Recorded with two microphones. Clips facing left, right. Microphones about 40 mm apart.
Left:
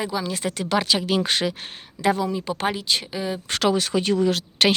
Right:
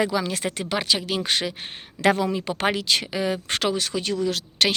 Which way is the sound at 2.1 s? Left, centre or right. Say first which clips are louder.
Even; right.